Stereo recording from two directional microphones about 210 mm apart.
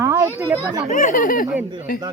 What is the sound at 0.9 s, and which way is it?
Speech, 40° left (ahead or behind).